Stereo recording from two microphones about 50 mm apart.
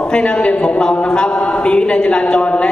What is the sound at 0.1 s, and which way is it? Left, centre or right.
A man's voice, centre.